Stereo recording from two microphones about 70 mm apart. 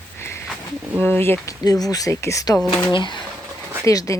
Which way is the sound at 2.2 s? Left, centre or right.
Left.